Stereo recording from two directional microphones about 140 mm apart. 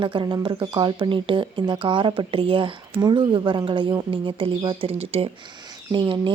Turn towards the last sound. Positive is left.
turn(degrees=-35)  # may be behind; listen again after turning